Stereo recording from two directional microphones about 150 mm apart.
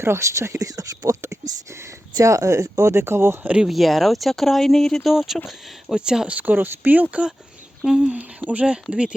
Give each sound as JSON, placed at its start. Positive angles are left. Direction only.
{"t": 0.0, "sound": "speech", "side_deg": -15}